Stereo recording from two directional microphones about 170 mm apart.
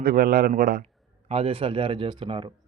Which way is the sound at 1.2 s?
35° right (ahead or behind).